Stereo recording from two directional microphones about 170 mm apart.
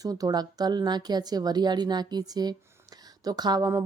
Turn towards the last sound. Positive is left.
turn(degrees=-20)  # may be behind; listen again after turning